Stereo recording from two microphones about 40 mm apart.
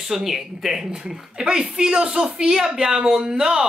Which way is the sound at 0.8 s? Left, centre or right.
Right.